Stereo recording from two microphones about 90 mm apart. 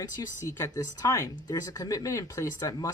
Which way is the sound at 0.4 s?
40° left (ahead or behind).